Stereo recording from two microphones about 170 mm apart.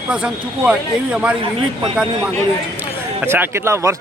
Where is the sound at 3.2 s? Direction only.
10° right (ahead or behind).